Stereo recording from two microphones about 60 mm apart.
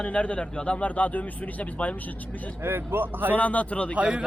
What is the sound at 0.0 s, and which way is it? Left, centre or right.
Speech, left.